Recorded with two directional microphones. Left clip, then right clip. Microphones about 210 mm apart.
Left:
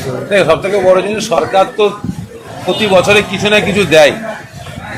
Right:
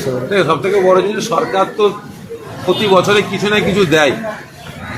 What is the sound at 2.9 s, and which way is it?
A man's voice, 35° left (ahead or behind).